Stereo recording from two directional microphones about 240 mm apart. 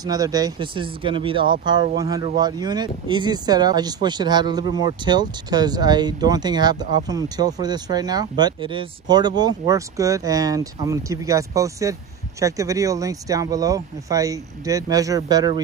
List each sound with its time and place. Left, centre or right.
0.0 s speech: centre